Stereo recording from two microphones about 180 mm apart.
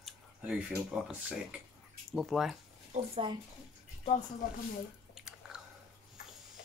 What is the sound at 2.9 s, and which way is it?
Speech, 40° right (ahead or behind).